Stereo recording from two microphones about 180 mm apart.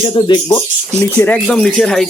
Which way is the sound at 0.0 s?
25° left (ahead or behind).